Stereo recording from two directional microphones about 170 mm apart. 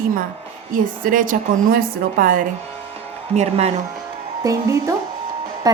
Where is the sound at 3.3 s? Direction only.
40° right (ahead or behind).